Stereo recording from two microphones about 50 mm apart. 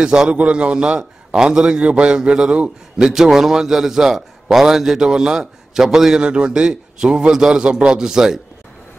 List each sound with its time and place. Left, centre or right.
0.0 s a man's voice: centre
3.1 s a man's voice: centre
6.2 s a man's voice: right